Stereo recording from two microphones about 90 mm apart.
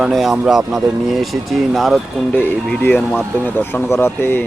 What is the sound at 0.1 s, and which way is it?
Speech, 5° right (ahead or behind).